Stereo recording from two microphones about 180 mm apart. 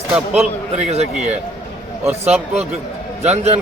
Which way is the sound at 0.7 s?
35° right (ahead or behind).